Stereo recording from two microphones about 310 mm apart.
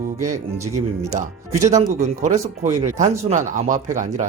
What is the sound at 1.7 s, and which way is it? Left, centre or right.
Speech, right.